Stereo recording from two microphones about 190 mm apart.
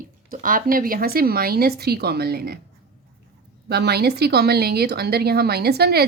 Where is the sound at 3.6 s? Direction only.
60° right (ahead or behind).